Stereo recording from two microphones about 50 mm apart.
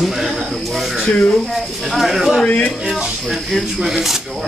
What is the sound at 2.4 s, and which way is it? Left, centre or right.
Speech, left.